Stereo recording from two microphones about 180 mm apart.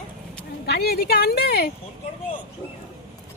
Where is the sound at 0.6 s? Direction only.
60° left (ahead or behind).